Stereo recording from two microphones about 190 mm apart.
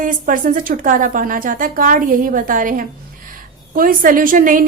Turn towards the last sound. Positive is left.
turn(degrees=-45)  # may be behind; listen again after turning